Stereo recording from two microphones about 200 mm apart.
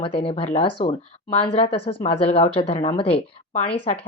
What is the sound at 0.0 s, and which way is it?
Speech, 25° left (ahead or behind).